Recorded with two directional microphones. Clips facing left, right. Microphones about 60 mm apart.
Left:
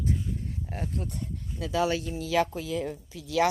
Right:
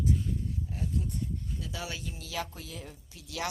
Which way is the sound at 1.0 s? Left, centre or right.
Left.